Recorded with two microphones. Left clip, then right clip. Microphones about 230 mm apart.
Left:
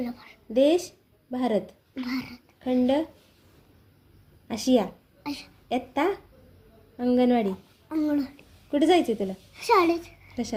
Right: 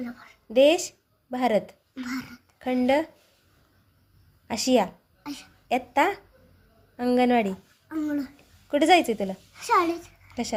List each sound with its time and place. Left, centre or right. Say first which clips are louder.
0.5 s speech: right 3 dB; right
2.0 s a child's voice: left 1 dB; centre
2.6 s speech: right 1 dB; right
4.4 s a woman's voice: right 1 dB; right
5.2 s speech: left 3 dB; centre
5.6 s a woman's voice: right 3 dB; right
9.6 s a child's voice: left 2 dB; centre
10.2 s a sound: right 6 dB; right